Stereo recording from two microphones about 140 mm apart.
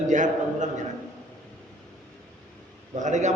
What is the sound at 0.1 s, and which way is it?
Speech, 60° right (ahead or behind).